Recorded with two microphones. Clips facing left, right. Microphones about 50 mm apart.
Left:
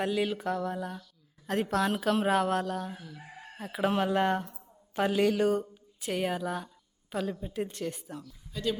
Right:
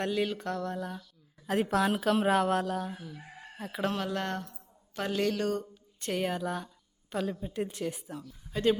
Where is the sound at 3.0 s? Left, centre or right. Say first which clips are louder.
Right 1 dB; centre.